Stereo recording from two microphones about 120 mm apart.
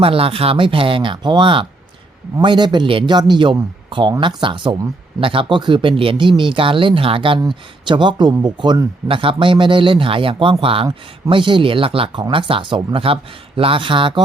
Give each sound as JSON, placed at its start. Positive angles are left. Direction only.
{"t": 0.0, "sound": "speech", "side_deg": -50}